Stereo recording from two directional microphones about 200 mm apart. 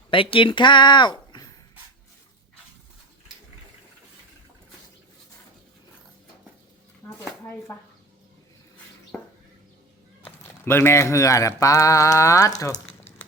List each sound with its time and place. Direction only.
0.1 s speech: 25° left (ahead or behind)
9.1 s a sound: 5° left (ahead or behind)
10.2 s speech: 10° left (ahead or behind)